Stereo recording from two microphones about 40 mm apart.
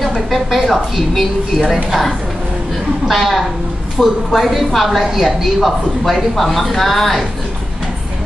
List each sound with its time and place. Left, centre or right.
0.0 s speech: centre